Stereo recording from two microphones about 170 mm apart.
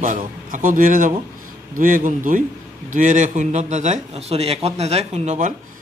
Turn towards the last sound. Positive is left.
turn(degrees=-40)  # may be behind; listen again after turning